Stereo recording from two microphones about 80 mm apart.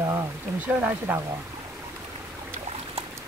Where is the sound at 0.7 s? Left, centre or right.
Centre.